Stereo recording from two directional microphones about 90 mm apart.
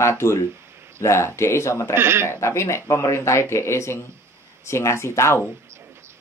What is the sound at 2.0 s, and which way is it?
Speech, 30° right (ahead or behind).